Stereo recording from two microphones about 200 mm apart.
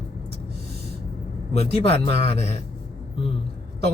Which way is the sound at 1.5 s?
30° left (ahead or behind).